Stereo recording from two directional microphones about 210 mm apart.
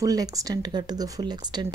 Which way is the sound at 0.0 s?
15° right (ahead or behind).